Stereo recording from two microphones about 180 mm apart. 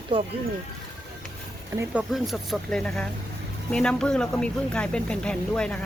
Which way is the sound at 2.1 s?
Centre (ahead or behind).